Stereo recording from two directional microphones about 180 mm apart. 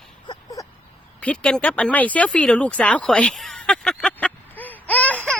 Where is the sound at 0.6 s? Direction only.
20° left (ahead or behind).